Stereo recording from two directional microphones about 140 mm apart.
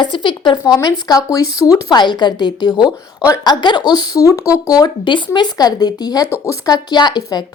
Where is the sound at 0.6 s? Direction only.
25° left (ahead or behind).